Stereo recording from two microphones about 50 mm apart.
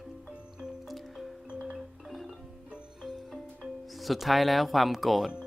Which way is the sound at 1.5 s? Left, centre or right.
Centre.